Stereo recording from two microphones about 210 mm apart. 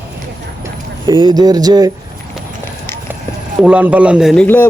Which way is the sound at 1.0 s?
20° right (ahead or behind).